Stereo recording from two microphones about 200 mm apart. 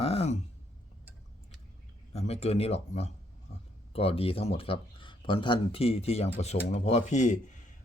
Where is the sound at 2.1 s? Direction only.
30° left (ahead or behind).